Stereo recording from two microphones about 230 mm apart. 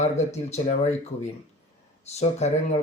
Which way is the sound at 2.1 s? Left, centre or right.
Left.